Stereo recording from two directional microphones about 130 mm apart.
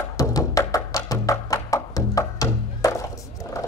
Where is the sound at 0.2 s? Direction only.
25° left (ahead or behind).